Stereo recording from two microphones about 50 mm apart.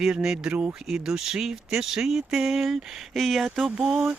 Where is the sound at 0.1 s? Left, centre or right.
Centre.